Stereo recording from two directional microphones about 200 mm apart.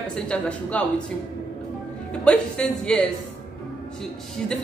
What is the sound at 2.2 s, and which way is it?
Speech, 5° left (ahead or behind).